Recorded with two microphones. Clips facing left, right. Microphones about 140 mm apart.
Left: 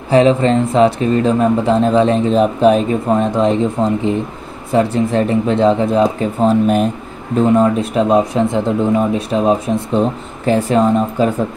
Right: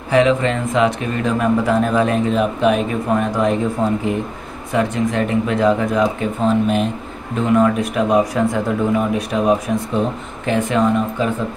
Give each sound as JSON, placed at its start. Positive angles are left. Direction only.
{"t": 0.1, "sound": "speech", "side_deg": 30}